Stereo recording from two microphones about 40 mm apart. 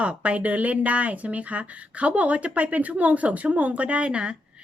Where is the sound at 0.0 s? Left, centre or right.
Right.